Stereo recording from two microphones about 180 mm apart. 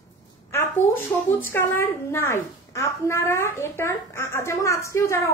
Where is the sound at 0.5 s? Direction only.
10° left (ahead or behind).